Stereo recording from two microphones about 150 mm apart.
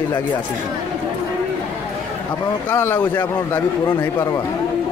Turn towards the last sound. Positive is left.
turn(degrees=20)  # may be behind; listen again after turning